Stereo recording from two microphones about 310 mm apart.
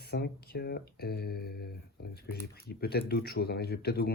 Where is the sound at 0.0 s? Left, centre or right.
Left.